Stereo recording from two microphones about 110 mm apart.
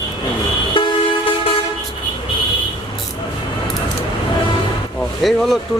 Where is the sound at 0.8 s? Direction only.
50° left (ahead or behind).